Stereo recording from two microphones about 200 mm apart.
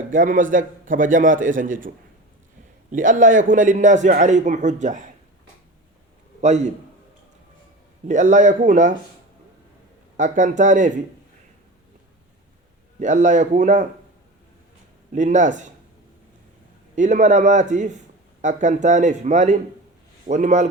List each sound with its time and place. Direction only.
0.1 s a man's voice: 40° right (ahead or behind)
2.9 s a man's voice: 40° right (ahead or behind)
6.4 s a man's voice: 35° right (ahead or behind)
8.0 s a man's voice: 40° right (ahead or behind)
10.2 s a man's voice: 40° right (ahead or behind)
13.0 s a man's voice: 40° right (ahead or behind)
15.1 s a man's voice: 40° right (ahead or behind)
16.9 s a man's voice: 40° right (ahead or behind)